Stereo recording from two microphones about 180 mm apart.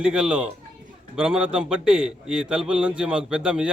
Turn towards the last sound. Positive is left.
turn(degrees=-5)  # may be behind; listen again after turning